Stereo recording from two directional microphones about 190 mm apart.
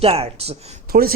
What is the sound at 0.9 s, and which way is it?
Speech, 55° right (ahead or behind).